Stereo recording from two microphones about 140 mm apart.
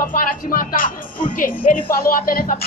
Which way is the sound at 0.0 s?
75° left (ahead or behind).